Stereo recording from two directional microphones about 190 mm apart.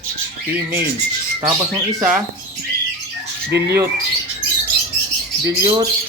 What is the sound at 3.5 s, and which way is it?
Speech, 60° right (ahead or behind).